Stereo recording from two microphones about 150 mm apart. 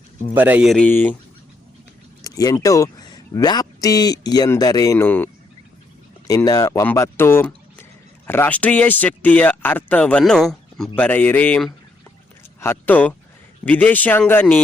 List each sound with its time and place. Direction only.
0.3 s speech: 10° right (ahead or behind)
0.7 s speech: 10° left (ahead or behind)
2.2 s speech: 25° left (ahead or behind)